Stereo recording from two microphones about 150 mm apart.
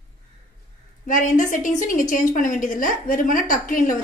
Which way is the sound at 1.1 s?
60° left (ahead or behind).